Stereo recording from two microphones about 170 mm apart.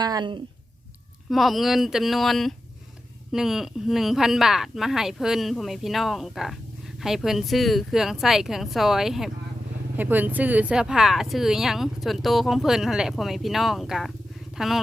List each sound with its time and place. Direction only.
0.0 s speech: 25° right (ahead or behind)
1.3 s speech: centre (ahead or behind)